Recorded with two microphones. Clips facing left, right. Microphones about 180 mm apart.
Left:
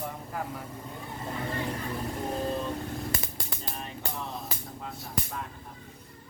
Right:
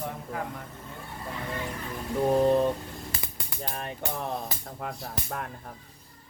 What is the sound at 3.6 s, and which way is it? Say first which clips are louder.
Speech: right 6 dB; 60° right (ahead or behind).